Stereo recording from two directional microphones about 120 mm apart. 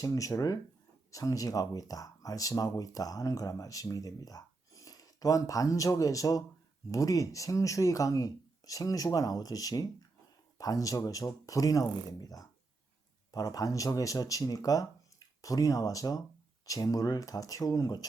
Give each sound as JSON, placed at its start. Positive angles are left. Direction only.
{"t": 0.0, "sound": "speech", "side_deg": 25}